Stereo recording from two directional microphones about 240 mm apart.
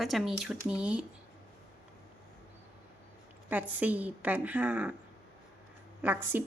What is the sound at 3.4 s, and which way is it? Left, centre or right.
Speech, centre.